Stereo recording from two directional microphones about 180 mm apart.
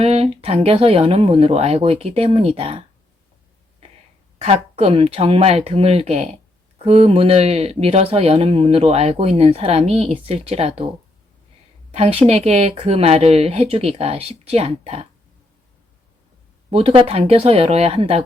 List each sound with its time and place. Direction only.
0.0 s speech: 35° right (ahead or behind)
4.4 s speech: 35° right (ahead or behind)
11.9 s speech: 35° right (ahead or behind)
16.7 s speech: 30° right (ahead or behind)